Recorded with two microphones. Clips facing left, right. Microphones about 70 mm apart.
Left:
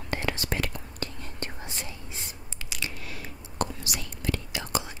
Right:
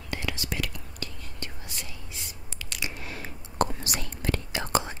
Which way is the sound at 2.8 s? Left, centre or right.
Right.